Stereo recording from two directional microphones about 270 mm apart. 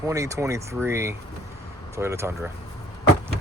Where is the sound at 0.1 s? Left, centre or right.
Centre.